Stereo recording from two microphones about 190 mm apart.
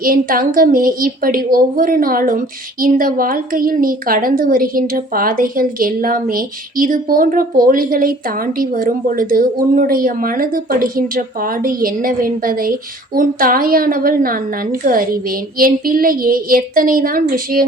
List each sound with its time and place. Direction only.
0.0 s a woman's voice: 50° right (ahead or behind)